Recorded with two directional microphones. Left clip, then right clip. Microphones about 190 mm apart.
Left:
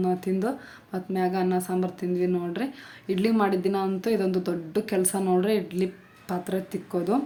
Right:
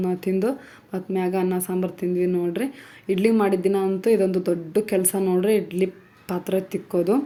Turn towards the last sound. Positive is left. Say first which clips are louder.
# right 5 dB
turn(degrees=-15)  # may be behind; listen again after turning